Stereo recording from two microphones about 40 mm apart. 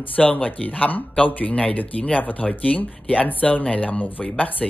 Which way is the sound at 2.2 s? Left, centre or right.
Left.